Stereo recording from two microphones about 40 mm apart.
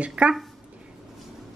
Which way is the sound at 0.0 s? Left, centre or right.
Right.